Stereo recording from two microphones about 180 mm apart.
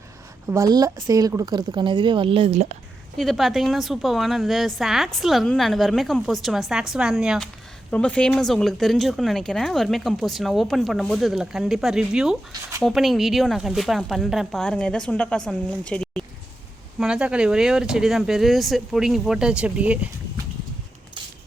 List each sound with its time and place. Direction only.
0.4 s a woman's voice: 20° right (ahead or behind); by 2.7 s 40° right (ahead or behind)
3.2 s speech: centre (ahead or behind)
17.0 s speech: 5° right (ahead or behind)